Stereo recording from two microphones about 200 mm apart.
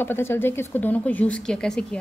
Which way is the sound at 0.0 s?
10° left (ahead or behind).